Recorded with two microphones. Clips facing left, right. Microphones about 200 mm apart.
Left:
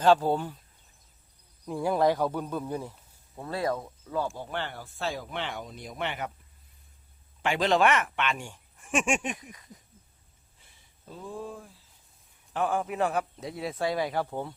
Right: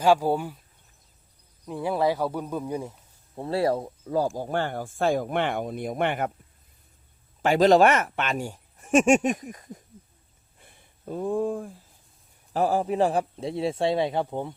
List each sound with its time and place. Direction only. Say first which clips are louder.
0.0 s speech: right 1 dB; 10° right (ahead or behind)
1.6 s speech: even; 5° right (ahead or behind)
3.3 s speech: right 6 dB; 30° right (ahead or behind); by 6.3 s 50° right (ahead or behind)
7.4 s speech: right 7 dB; 40° right (ahead or behind)
10.6 s a sound: right 11 dB; 55° right (ahead or behind)
12.5 s a man's voice: right 5 dB; 35° right (ahead or behind); by 14.5 s 20° right (ahead or behind)